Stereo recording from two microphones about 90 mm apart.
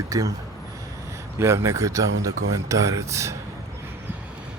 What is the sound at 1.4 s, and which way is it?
Speech, 35° right (ahead or behind).